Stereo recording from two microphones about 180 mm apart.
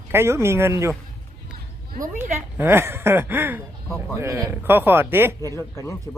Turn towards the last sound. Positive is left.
turn(degrees=15)  # may be behind; listen again after turning